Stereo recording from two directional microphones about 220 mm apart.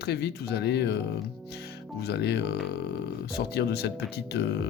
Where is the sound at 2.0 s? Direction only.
50° left (ahead or behind).